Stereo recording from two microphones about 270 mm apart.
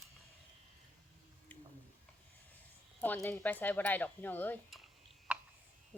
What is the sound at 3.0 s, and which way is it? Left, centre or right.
Speech, centre.